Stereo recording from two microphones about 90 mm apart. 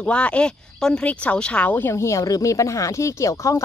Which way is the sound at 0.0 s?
15° left (ahead or behind).